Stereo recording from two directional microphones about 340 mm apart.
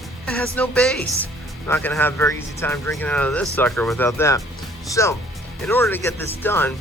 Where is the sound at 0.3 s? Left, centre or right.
Centre.